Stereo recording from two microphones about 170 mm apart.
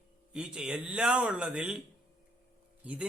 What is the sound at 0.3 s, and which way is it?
A man's voice, 5° right (ahead or behind).